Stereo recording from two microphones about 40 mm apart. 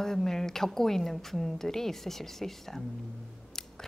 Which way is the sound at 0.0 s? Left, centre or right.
Centre.